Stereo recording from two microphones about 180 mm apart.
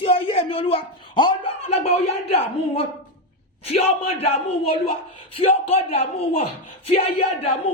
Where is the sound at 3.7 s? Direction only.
35° left (ahead or behind).